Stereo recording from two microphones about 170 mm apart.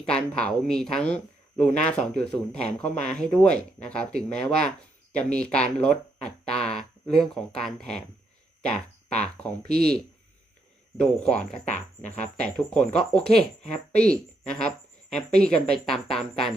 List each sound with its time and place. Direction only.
0.0 s speech: 5° left (ahead or behind)
6.2 s a sound: 5° left (ahead or behind)
7.6 s speech: 5° left (ahead or behind)
9.6 s speech: 65° right (ahead or behind)
10.9 s speech: 5° left (ahead or behind)